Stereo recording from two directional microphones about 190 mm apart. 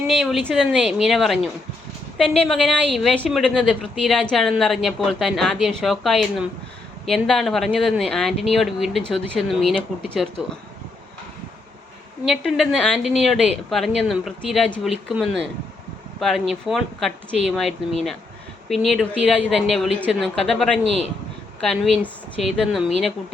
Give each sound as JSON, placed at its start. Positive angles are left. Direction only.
{"t": 0.1, "sound": "a woman's voice", "side_deg": 0}
{"t": 12.2, "sound": "a woman's voice", "side_deg": 0}